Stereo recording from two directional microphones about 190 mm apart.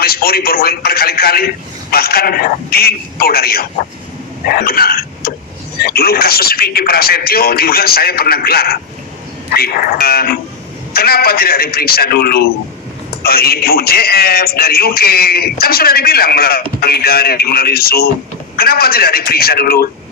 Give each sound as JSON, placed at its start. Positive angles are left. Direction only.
{"t": 0.0, "sound": "a man's voice", "side_deg": 55}